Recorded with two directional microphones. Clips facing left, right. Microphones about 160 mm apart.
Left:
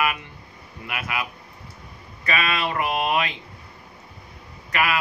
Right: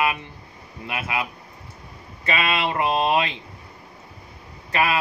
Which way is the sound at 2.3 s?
25° right (ahead or behind).